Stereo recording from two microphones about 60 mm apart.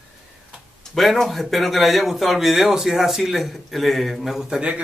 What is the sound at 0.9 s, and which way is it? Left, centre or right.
A man's voice, centre.